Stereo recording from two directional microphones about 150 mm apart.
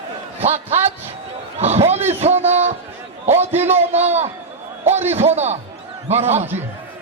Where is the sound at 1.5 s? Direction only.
45° right (ahead or behind).